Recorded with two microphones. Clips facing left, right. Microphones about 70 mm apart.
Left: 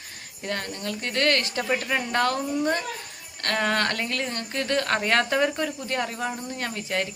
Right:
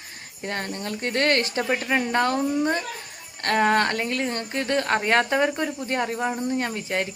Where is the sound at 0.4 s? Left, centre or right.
Right.